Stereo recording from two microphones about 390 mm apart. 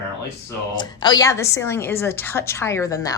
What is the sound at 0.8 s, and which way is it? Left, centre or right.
A woman's voice, centre.